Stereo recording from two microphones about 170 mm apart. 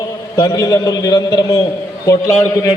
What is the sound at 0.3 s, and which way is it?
A man's voice, 25° left (ahead or behind).